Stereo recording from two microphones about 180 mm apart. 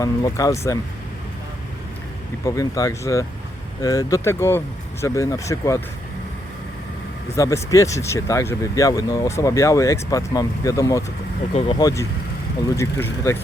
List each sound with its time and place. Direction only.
0.0 s speech: 20° left (ahead or behind)
2.4 s speech: 20° left (ahead or behind)
7.3 s speech: 20° left (ahead or behind)